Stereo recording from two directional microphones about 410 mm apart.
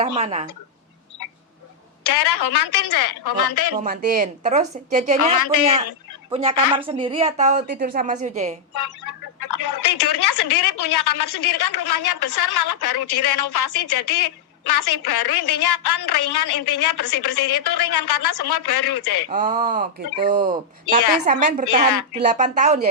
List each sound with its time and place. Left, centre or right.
0.0 s a woman's voice: centre
2.0 s a woman's voice: left
3.8 s a woman's voice: centre
5.3 s speech: left
6.3 s a woman's voice: centre
8.7 s speech: left
19.3 s speech: centre
20.9 s speech: left
21.3 s speech: right
21.6 s a woman's voice: left
22.2 s a woman's voice: centre